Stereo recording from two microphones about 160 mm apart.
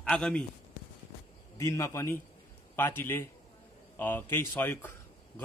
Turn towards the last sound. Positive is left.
turn(degrees=15)  # may be behind; listen again after turning